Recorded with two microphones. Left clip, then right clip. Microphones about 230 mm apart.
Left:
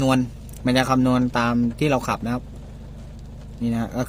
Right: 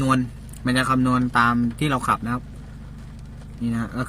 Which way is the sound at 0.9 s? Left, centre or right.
Right.